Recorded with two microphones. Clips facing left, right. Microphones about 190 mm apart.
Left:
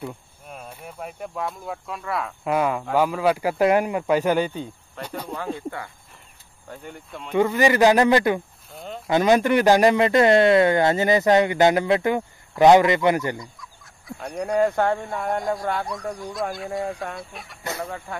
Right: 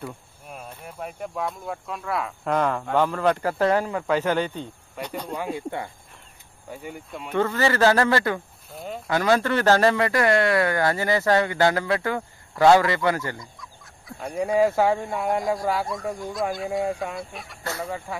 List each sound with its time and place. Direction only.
0.5 s speech: centre (ahead or behind)
5.0 s speech: 10° right (ahead or behind)
7.3 s speech: 15° left (ahead or behind)
8.7 s a sound: 5° right (ahead or behind)
9.0 s speech: 20° left (ahead or behind)
13.4 s speech: centre (ahead or behind)